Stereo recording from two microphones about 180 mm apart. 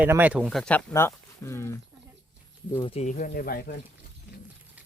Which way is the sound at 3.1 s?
50° left (ahead or behind).